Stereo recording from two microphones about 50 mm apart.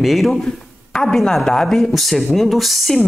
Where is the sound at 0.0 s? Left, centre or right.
Centre.